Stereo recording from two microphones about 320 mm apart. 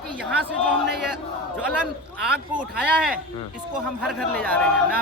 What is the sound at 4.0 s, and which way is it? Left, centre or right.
Speech, centre.